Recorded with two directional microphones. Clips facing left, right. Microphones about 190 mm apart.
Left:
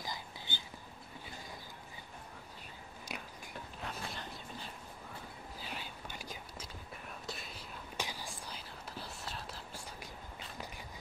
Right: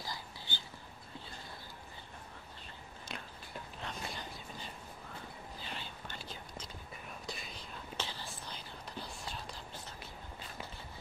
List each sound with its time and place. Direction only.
0.0 s whispering: 20° left (ahead or behind)
3.1 s whispering: 10° left (ahead or behind)
8.0 s whispering: 15° left (ahead or behind)